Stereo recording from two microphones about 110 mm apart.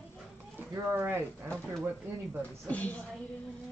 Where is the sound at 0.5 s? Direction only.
20° right (ahead or behind).